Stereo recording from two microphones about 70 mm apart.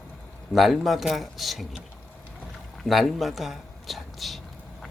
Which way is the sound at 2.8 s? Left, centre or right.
Centre.